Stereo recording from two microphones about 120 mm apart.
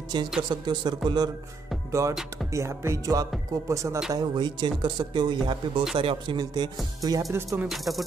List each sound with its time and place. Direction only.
0.1 s speech: 40° right (ahead or behind)
1.9 s speech: 25° right (ahead or behind)
4.1 s speech: 35° right (ahead or behind)
7.6 s speech: centre (ahead or behind)